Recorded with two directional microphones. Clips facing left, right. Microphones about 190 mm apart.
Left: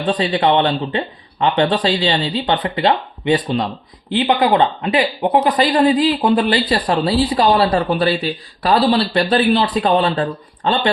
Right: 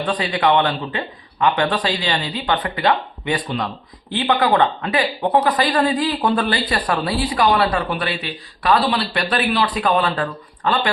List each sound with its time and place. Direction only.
0.0 s speech: 25° left (ahead or behind)